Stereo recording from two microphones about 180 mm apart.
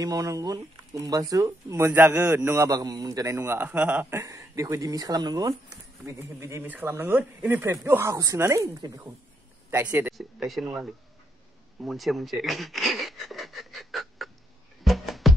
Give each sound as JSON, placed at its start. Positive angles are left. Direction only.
{"t": 0.0, "sound": "speech", "side_deg": -20}
{"t": 11.8, "sound": "a sound", "side_deg": 0}
{"t": 14.8, "sound": "music", "side_deg": 0}